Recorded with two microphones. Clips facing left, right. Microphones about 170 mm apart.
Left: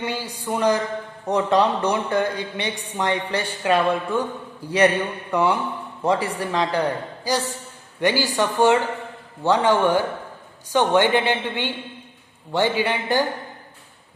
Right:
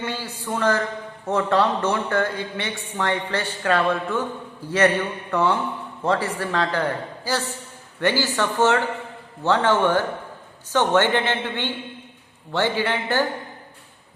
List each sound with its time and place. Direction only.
0.0 s a woman's voice: 15° left (ahead or behind)